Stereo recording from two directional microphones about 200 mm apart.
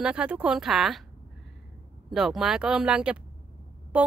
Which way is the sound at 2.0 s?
Centre (ahead or behind).